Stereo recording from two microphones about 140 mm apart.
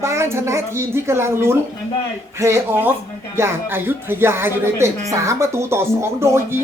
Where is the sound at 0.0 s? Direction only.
20° right (ahead or behind).